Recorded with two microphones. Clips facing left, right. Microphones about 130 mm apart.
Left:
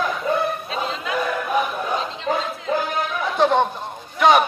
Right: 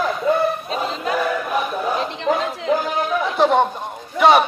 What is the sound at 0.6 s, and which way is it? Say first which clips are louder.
Battle cry: right 3 dB; 40° right (ahead or behind).